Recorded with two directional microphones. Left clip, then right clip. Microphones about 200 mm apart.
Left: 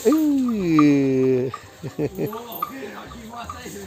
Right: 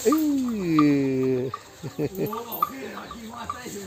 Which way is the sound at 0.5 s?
40° left (ahead or behind).